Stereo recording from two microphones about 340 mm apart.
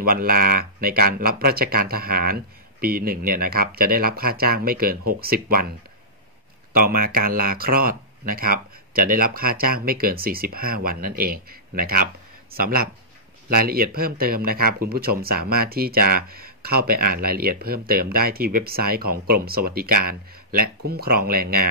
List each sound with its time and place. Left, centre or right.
0.0 s speech: right